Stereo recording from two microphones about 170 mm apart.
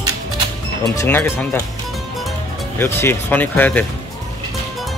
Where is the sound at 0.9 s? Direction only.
15° left (ahead or behind).